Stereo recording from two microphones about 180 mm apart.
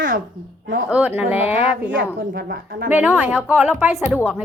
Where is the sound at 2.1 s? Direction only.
65° right (ahead or behind).